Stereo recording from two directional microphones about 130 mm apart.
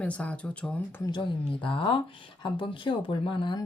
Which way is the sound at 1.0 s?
40° left (ahead or behind).